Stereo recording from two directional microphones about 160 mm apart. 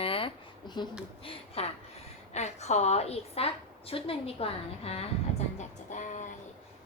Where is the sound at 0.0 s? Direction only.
35° left (ahead or behind).